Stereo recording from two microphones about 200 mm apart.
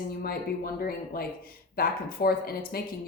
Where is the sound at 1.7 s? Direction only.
50° left (ahead or behind).